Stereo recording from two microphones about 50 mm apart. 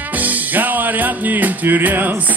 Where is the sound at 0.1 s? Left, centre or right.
Right.